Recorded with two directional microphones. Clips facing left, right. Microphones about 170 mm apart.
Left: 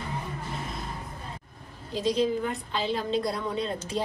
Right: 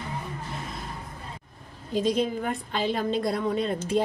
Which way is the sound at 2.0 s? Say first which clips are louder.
Right 1 dB; 50° right (ahead or behind).